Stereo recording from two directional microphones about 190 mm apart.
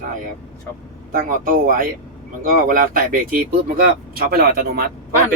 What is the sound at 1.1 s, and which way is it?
Speech, 45° right (ahead or behind).